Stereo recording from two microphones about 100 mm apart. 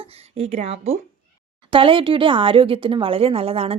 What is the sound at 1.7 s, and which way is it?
A woman's voice, 60° right (ahead or behind).